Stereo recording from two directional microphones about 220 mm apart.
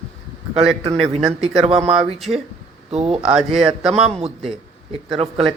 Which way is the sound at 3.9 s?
30° right (ahead or behind).